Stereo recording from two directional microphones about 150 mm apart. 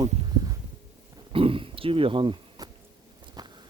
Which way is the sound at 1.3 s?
35° right (ahead or behind).